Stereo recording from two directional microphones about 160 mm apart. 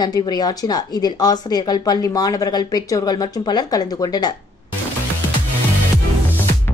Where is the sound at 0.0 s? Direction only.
25° left (ahead or behind).